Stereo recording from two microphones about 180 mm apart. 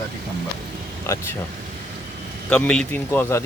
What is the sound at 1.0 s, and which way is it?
Speech, 15° left (ahead or behind).